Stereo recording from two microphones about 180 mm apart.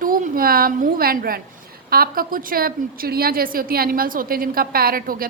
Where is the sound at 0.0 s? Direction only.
50° right (ahead or behind).